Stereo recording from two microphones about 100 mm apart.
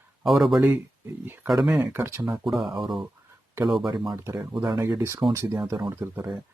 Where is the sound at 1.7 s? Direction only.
25° right (ahead or behind).